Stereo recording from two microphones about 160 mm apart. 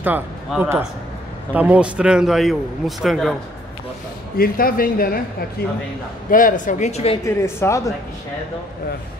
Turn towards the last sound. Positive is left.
turn(degrees=20)  # may be behind; listen again after turning